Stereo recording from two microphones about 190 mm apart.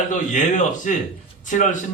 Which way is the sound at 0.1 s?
40° left (ahead or behind).